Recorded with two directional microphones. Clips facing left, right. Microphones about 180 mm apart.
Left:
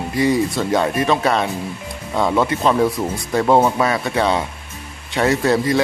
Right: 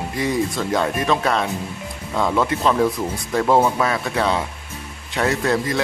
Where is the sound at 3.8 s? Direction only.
5° left (ahead or behind).